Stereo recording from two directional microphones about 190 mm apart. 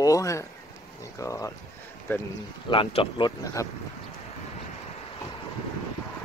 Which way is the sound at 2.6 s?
30° left (ahead or behind).